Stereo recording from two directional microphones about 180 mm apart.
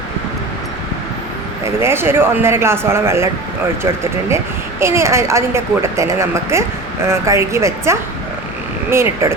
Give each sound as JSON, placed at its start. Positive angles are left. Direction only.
{"t": 1.6, "sound": "a woman's voice", "side_deg": -15}
{"t": 4.8, "sound": "a woman's voice", "side_deg": -15}